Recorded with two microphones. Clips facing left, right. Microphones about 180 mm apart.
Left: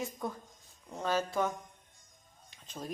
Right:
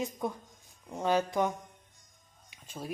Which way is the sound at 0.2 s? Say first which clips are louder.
Right 3 dB; 15° right (ahead or behind).